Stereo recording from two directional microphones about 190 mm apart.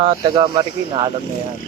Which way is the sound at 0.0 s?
25° right (ahead or behind).